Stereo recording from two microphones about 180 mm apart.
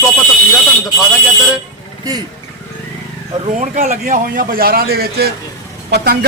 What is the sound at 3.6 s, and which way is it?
A man's voice, 45° right (ahead or behind).